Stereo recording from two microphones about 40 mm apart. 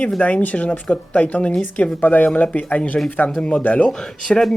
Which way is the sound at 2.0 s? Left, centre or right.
Left.